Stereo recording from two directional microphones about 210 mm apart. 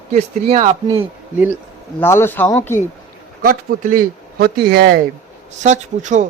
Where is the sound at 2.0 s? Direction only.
10° left (ahead or behind).